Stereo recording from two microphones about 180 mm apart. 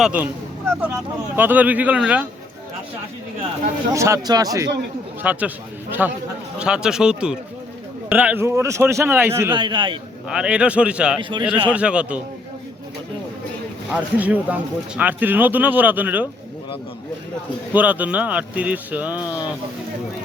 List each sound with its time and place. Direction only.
0.0 s speech: 10° right (ahead or behind)
3.9 s speech: 15° right (ahead or behind)
5.2 s a man's voice: 10° right (ahead or behind)
9.5 s a man's voice: 25° right (ahead or behind)
10.2 s a man's voice: 5° right (ahead or behind)
11.2 s a man's voice: 25° right (ahead or behind)
11.4 s speech: 10° right (ahead or behind)
13.9 s speech: 10° right (ahead or behind)
17.7 s speech: 10° right (ahead or behind)